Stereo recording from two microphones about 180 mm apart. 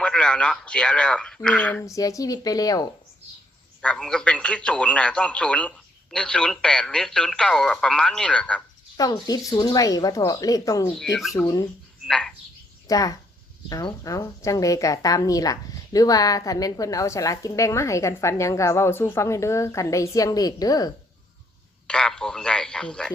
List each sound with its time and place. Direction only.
0.0 s a man's voice: 5° left (ahead or behind)
1.9 s speech: 20° left (ahead or behind)
3.8 s a man's voice: 5° left (ahead or behind)
9.0 s speech: 20° left (ahead or behind)
10.8 s a man's voice: 5° left (ahead or behind)
11.4 s speech: 25° left (ahead or behind)
12.0 s speech: 5° left (ahead or behind)
12.9 s speech: 20° left (ahead or behind)
21.8 s a man's voice: 5° left (ahead or behind)